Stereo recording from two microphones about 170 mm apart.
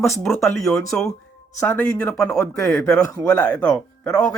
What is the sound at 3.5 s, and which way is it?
Speech, 5° left (ahead or behind).